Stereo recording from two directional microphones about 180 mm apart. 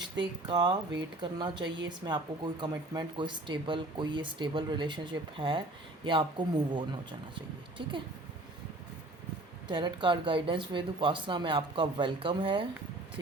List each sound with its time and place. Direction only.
0.4 s speech: 25° right (ahead or behind)
9.6 s speech: 25° right (ahead or behind)